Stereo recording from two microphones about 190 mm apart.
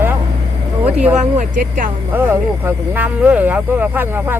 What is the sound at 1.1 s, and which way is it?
Speech, 40° right (ahead or behind).